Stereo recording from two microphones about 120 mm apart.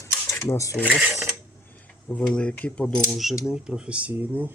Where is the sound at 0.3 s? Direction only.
25° left (ahead or behind).